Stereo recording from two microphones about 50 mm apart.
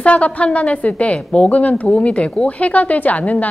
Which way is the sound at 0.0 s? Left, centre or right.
Left.